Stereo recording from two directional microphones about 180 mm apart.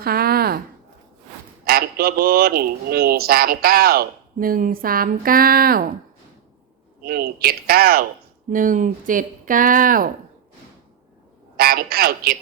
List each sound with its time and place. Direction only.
0.0 s speech: 55° right (ahead or behind)
1.6 s speech: 55° right (ahead or behind)
7.0 s speech: 55° right (ahead or behind)
8.4 s speech: 45° right (ahead or behind)
11.5 s a man's voice: 55° right (ahead or behind)